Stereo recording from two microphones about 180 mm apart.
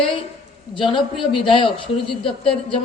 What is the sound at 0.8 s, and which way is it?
A woman's voice, 25° left (ahead or behind).